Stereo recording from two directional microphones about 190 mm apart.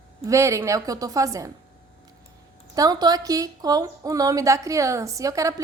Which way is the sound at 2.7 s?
20° right (ahead or behind).